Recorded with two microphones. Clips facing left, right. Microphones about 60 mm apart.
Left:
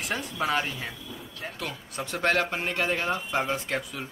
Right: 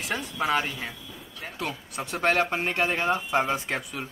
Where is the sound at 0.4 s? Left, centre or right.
Centre.